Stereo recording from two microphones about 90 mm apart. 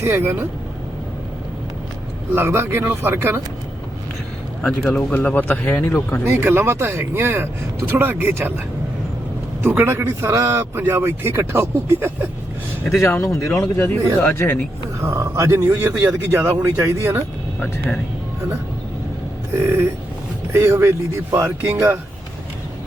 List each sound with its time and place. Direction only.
0.0 s a man's voice: 25° right (ahead or behind)
2.3 s a man's voice: 25° right (ahead or behind)
4.6 s speech: 5° left (ahead or behind)
5.1 s speech: 20° left (ahead or behind)
6.2 s a man's voice: 25° right (ahead or behind)
9.6 s a man's voice: 25° right (ahead or behind)
13.0 s speech: 25° left (ahead or behind)
15.0 s a man's voice: 35° right (ahead or behind)
17.6 s speech: 5° left (ahead or behind)
19.5 s a man's voice: 25° right (ahead or behind)